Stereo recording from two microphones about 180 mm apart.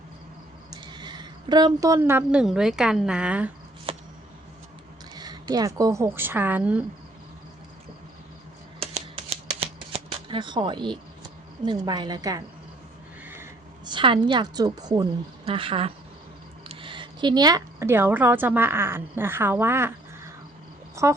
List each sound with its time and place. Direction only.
0.7 s speech: 25° right (ahead or behind); by 3.5 s 5° right (ahead or behind)
3.9 s a sound: 30° right (ahead or behind)
5.1 s a woman's voice: 20° right (ahead or behind)
8.8 s computer keyboard: 35° right (ahead or behind)
9.5 s shuffling cards: 35° right (ahead or behind)
11.6 s a woman's voice: 25° right (ahead or behind)
13.2 s a sound: 15° right (ahead or behind)
13.8 s a woman's voice: 25° right (ahead or behind)